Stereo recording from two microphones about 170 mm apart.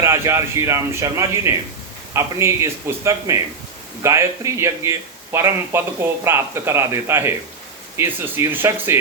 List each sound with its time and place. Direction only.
0.0 s a man's voice: 15° right (ahead or behind)